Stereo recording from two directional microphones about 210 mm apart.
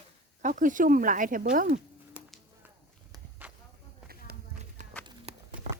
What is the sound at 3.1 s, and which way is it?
Walk, 10° right (ahead or behind).